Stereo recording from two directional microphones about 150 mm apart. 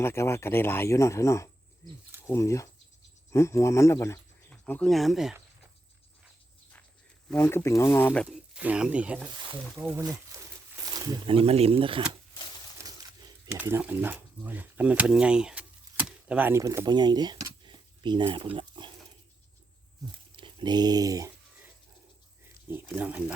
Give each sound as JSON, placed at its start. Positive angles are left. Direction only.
{"t": 0.0, "sound": "speech", "side_deg": 15}
{"t": 4.4, "sound": "speech", "side_deg": 5}
{"t": 7.3, "sound": "speech", "side_deg": 15}
{"t": 8.5, "sound": "speech", "side_deg": -5}
{"t": 10.3, "sound": "a sound", "side_deg": -20}
{"t": 11.3, "sound": "speech", "side_deg": -40}
{"t": 13.5, "sound": "speech", "side_deg": -15}
{"t": 20.3, "sound": "speech", "side_deg": -35}
{"t": 23.0, "sound": "speech", "side_deg": -10}